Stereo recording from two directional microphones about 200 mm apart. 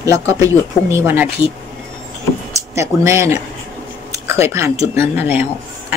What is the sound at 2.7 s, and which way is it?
Speech, 15° right (ahead or behind).